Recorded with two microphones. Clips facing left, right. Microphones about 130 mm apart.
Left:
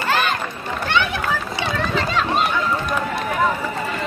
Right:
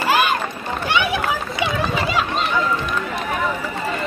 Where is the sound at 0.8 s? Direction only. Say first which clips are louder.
Right 1 dB; 10° right (ahead or behind).